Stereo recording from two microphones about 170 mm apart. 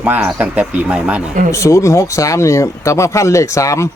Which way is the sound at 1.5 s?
15° left (ahead or behind).